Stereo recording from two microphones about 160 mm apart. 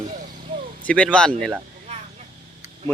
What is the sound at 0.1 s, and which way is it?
Vehicle, 50° right (ahead or behind).